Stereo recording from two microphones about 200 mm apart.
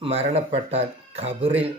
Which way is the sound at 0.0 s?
30° right (ahead or behind).